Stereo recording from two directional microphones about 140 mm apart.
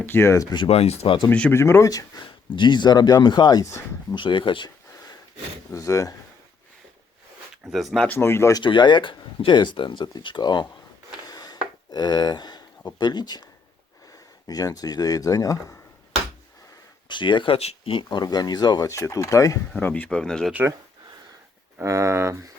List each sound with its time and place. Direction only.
0.0 s speech: 15° left (ahead or behind)
0.5 s speech: 40° left (ahead or behind)
1.3 s speech: 15° left (ahead or behind); by 4.7 s 35° left (ahead or behind)
5.7 s speech: 20° left (ahead or behind)
7.5 s speech: centre (ahead or behind); by 8.6 s 20° left (ahead or behind)
8.6 s speech: 35° left (ahead or behind)
11.3 s wood: 30° left (ahead or behind)
13.0 s speech: 30° left (ahead or behind)
17.1 s speech: 35° left (ahead or behind)
19.7 s speech: 10° left (ahead or behind)
20.5 s speech: 10° right (ahead or behind)
21.8 s speech: 20° right (ahead or behind)